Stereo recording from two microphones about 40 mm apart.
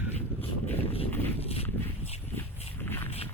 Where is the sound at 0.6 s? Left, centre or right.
Left.